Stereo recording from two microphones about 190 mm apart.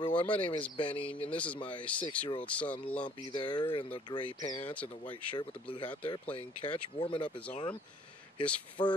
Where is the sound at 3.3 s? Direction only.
25° left (ahead or behind).